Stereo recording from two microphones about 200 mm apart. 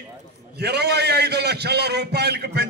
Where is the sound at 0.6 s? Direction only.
55° right (ahead or behind).